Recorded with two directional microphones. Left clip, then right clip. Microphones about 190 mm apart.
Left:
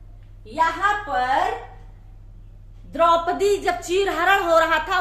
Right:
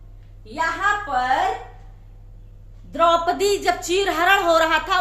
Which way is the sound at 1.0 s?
10° right (ahead or behind).